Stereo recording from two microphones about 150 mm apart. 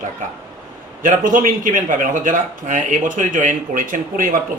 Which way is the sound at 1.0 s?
65° right (ahead or behind).